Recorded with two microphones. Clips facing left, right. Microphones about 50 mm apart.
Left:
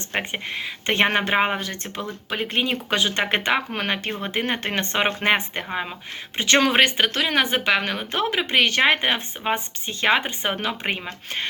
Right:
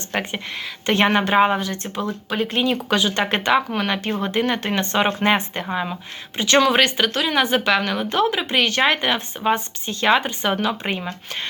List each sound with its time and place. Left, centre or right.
0.1 s speech: left